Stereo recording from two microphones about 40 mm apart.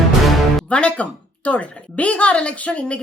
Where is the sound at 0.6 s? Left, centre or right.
Left.